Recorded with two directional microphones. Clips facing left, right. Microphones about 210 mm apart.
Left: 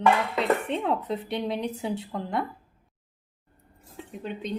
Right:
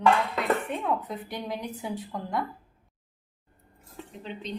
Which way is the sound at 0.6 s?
25° left (ahead or behind).